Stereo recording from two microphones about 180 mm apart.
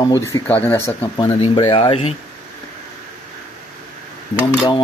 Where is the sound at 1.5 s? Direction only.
25° left (ahead or behind).